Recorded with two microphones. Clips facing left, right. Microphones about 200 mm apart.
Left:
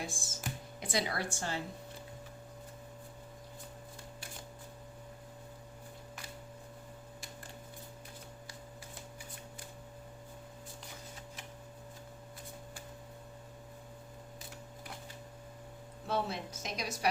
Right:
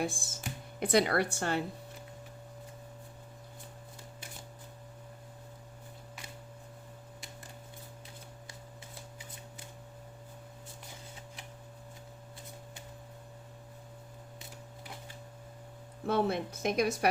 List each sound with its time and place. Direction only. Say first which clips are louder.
0.0 s a woman's voice: right 6 dB; 60° right (ahead or behind)
16.0 s a woman's voice: right 6 dB; 55° right (ahead or behind)